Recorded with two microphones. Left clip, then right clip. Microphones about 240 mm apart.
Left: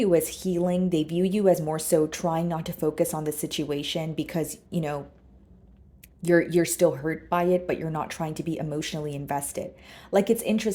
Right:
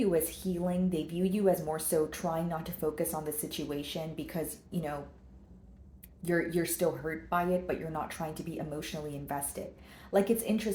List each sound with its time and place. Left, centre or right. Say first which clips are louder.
0.0 s a woman's voice: left 7 dB; left
6.2 s a woman's voice: left 9 dB; left